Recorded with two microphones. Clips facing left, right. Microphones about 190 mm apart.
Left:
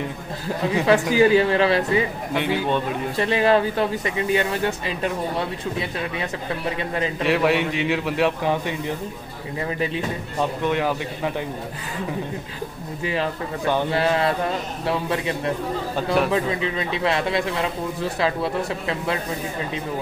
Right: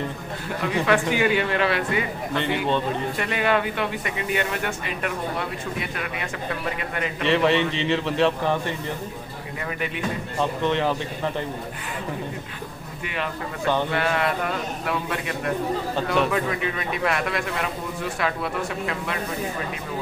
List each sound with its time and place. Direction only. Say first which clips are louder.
0.8 s speech: left 5 dB; 35° left (ahead or behind)
2.3 s a man's voice: left 1 dB; 10° left (ahead or behind)
3.2 s a man's voice: left 7 dB; 30° left (ahead or behind)
7.2 s a man's voice: right 1 dB; 10° left (ahead or behind)
10.6 s a man's voice: even; 10° left (ahead or behind)
13.0 s a man's voice: left 5 dB; 30° left (ahead or behind)